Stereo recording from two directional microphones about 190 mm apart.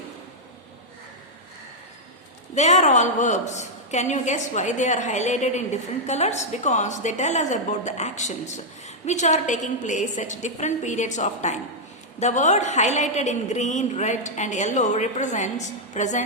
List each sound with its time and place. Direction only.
2.6 s a woman's voice: 35° left (ahead or behind)